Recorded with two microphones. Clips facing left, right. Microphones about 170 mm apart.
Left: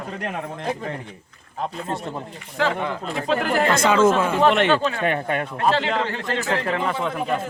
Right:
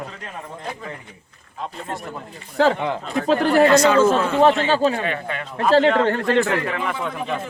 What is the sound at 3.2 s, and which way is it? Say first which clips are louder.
Speech: right 4 dB; 35° right (ahead or behind).